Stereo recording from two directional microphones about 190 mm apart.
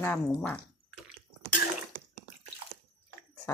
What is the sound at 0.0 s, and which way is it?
Speech, 10° left (ahead or behind).